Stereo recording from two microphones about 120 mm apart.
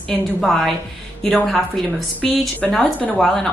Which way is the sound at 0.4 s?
Centre (ahead or behind).